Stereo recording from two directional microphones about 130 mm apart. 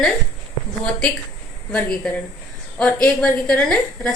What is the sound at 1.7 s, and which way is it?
A woman's voice, 5° left (ahead or behind).